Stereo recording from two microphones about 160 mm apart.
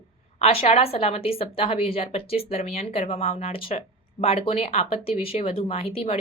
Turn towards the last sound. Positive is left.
turn(degrees=40)  # may be behind; listen again after turning